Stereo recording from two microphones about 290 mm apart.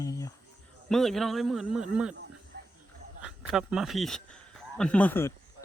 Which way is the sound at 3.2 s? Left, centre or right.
Centre.